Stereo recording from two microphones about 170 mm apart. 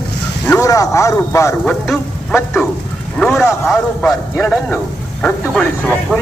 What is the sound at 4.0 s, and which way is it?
Speech, 10° left (ahead or behind).